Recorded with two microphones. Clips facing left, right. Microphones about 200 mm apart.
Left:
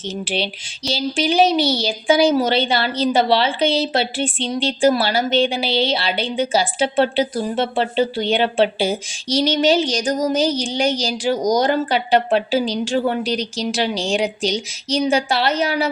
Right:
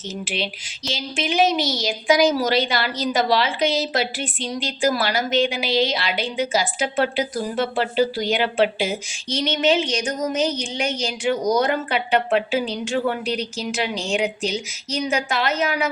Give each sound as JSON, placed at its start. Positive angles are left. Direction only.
{"t": 0.9, "sound": "a woman's voice", "side_deg": 35}